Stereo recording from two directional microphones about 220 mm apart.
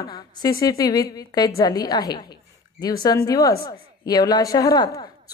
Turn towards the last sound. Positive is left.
turn(degrees=20)  # may be behind; listen again after turning